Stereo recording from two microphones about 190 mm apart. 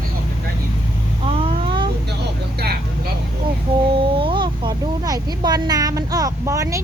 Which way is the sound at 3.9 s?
25° right (ahead or behind).